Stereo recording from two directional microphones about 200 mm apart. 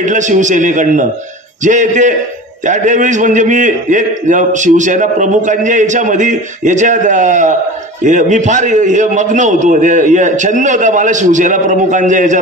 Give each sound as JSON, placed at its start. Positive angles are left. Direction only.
{"t": 0.0, "sound": "a man's voice", "side_deg": -40}